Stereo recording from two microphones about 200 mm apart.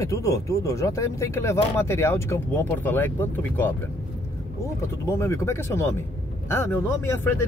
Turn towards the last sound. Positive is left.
turn(degrees=10)  # may be behind; listen again after turning